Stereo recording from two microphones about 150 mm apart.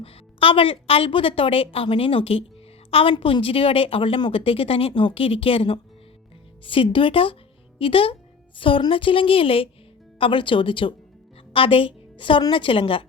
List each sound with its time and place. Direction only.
0.0 s a woman's voice: 40° left (ahead or behind)